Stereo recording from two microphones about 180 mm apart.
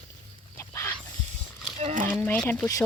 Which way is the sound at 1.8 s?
45° right (ahead or behind).